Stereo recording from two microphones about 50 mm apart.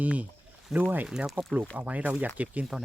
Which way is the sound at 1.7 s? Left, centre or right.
Right.